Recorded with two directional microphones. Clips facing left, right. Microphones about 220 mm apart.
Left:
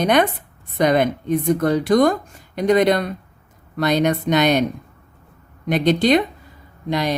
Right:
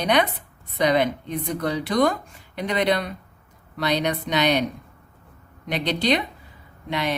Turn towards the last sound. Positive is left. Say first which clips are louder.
# left 5 dB
turn(degrees=40)  # may be behind; listen again after turning